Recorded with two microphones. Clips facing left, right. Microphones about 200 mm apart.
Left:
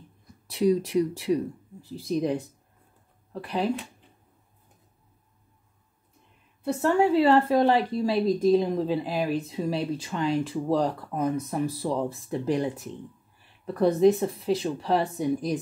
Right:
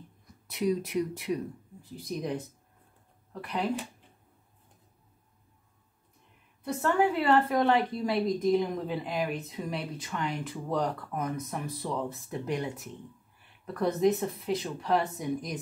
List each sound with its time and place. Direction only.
0.5 s a woman's voice: 30° left (ahead or behind)
6.6 s a woman's voice: 30° left (ahead or behind)